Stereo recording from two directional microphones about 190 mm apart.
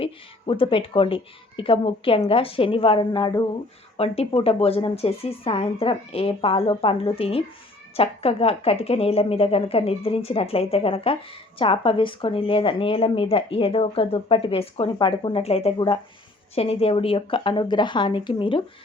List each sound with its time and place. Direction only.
0.0 s a woman's voice: 30° left (ahead or behind)